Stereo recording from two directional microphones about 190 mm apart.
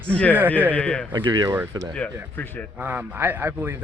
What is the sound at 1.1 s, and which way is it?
A man's voice, 25° right (ahead or behind).